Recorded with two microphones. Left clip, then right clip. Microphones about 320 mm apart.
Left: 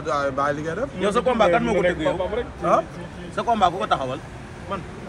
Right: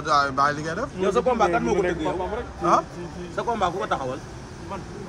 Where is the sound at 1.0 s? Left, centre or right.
Left.